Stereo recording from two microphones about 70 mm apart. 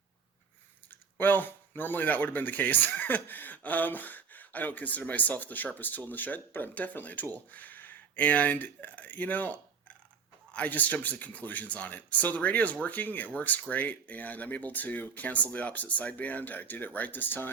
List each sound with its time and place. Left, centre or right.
0.9 s speech: left